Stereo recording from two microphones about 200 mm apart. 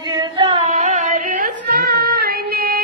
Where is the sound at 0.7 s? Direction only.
35° right (ahead or behind).